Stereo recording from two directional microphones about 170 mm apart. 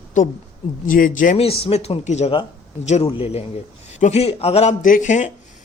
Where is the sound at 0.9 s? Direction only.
55° left (ahead or behind).